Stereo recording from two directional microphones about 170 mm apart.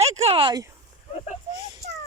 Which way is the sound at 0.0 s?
35° right (ahead or behind).